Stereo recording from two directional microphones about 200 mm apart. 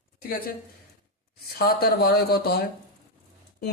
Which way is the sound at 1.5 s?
50° left (ahead or behind).